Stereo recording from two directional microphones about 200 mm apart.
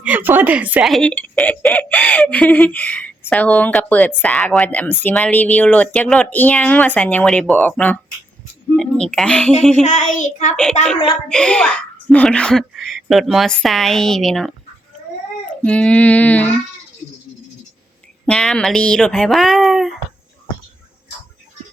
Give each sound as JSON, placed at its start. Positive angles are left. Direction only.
{"t": 0.0, "sound": "speech", "side_deg": -10}
{"t": 9.8, "sound": "child singing", "side_deg": 35}
{"t": 11.3, "sound": "speech", "side_deg": 5}
{"t": 18.3, "sound": "speech", "side_deg": 5}